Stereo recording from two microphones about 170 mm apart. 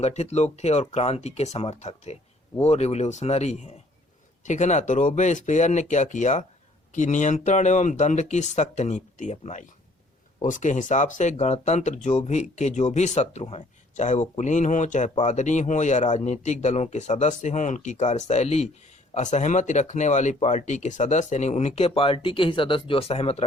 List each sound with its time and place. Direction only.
0.0 s speech: 40° left (ahead or behind)